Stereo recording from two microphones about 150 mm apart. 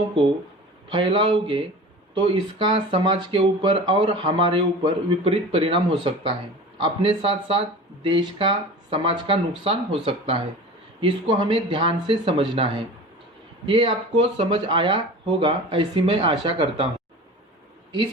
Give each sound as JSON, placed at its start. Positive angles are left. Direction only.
{"t": 0.9, "sound": "speech", "side_deg": -35}
{"t": 13.7, "sound": "speech", "side_deg": -35}